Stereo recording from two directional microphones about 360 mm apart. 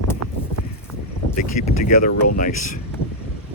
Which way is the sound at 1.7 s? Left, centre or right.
Left.